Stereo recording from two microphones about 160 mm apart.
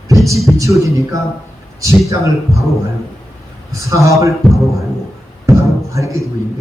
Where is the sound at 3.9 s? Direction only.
20° right (ahead or behind).